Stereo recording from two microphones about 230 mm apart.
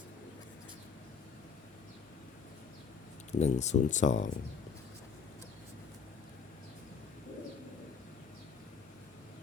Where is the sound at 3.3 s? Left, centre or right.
Left.